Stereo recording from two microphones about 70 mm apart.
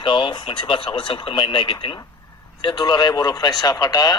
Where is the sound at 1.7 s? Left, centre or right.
Left.